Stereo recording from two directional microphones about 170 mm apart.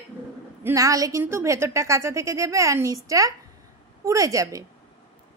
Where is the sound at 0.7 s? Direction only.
20° right (ahead or behind).